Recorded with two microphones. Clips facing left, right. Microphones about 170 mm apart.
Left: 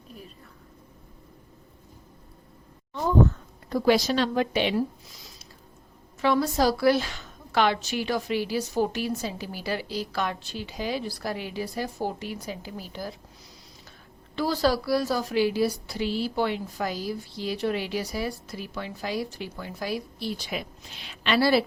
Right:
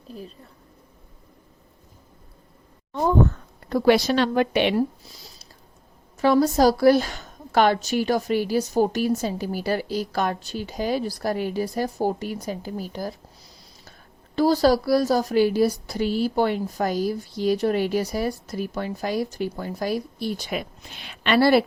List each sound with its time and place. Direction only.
3.7 s a woman's voice: 65° right (ahead or behind)
6.2 s a woman's voice: 40° right (ahead or behind)
14.3 s a woman's voice: 40° right (ahead or behind)